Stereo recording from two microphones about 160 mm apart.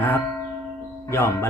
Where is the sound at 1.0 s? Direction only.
15° left (ahead or behind).